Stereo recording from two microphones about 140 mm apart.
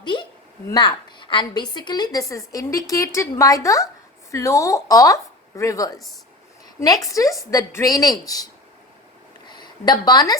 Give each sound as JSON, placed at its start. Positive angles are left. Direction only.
{"t": 0.0, "sound": "a sound", "side_deg": 35}
{"t": 0.7, "sound": "a woman's voice", "side_deg": 35}
{"t": 9.5, "sound": "a woman's voice", "side_deg": 30}